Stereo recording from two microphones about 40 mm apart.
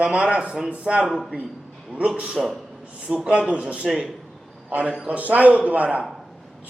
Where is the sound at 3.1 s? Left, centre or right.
Right.